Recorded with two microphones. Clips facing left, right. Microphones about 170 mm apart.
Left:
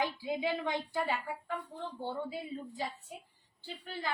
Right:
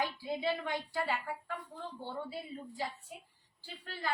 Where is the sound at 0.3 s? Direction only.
15° left (ahead or behind).